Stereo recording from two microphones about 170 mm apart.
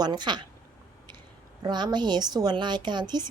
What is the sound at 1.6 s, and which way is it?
A woman's voice, 25° right (ahead or behind).